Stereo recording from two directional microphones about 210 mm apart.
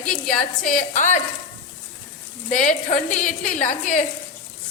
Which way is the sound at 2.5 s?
35° left (ahead or behind).